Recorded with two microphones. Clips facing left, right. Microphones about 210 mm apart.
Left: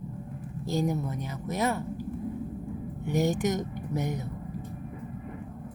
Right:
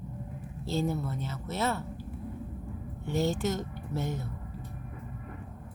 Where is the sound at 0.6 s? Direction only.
15° left (ahead or behind).